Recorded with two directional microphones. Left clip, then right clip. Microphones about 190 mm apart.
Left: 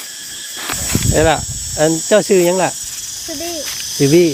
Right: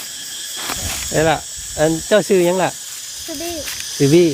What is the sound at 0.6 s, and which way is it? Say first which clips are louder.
Speech: left 5 dB; 10° left (ahead or behind).